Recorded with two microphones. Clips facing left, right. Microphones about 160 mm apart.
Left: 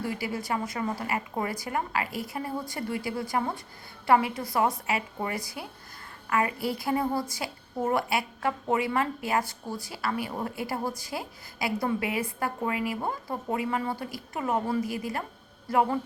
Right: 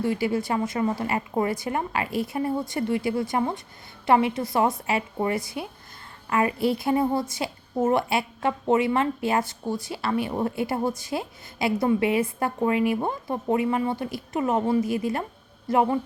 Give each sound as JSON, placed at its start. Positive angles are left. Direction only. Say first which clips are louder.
{"t": 0.0, "sound": "a woman's voice", "louder": "right 7 dB", "side_deg": -25}